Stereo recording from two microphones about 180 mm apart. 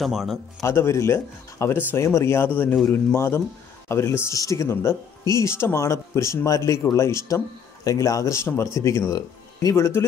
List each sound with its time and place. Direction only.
0.0 s speech: centre (ahead or behind)
0.6 s speech: 15° left (ahead or behind)